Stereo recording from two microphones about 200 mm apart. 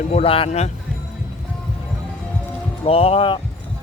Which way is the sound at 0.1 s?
30° left (ahead or behind).